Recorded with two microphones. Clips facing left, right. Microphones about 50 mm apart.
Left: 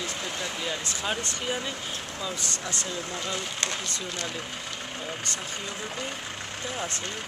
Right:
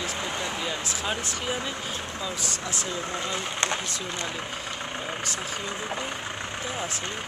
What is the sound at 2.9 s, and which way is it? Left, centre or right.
Speech, right.